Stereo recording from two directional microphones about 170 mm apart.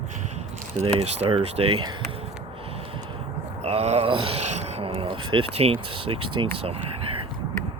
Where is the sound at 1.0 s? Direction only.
35° right (ahead or behind).